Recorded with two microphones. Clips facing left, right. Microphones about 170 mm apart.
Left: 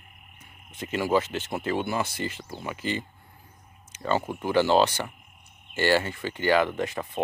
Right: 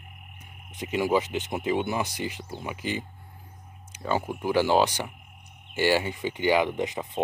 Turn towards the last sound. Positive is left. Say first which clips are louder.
# even
turn(degrees=-15)  # may be behind; listen again after turning